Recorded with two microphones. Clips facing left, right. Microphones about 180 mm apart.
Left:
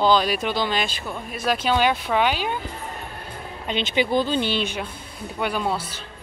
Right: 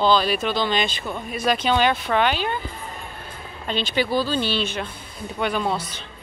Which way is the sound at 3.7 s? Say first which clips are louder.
Left 1 dB; 20° left (ahead or behind).